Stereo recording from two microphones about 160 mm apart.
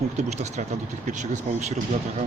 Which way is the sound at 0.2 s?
45° right (ahead or behind).